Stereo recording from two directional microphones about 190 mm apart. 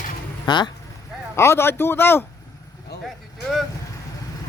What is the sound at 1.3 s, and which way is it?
Speech, 15° left (ahead or behind).